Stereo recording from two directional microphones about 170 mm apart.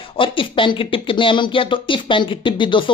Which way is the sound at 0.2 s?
30° left (ahead or behind).